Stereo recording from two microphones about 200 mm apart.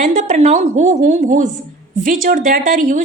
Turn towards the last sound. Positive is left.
turn(degrees=-40)  # may be behind; listen again after turning